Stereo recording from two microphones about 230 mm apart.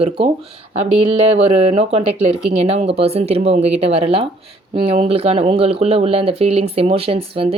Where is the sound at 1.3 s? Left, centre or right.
Right.